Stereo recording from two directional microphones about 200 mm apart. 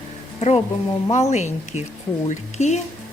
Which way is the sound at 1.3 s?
35° left (ahead or behind).